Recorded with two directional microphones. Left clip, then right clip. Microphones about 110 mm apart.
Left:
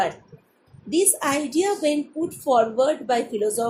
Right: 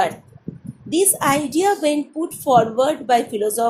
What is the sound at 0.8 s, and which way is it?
A woman's voice, 50° right (ahead or behind).